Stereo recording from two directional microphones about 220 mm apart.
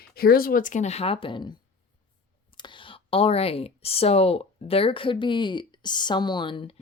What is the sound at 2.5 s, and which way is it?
Speech, 20° left (ahead or behind).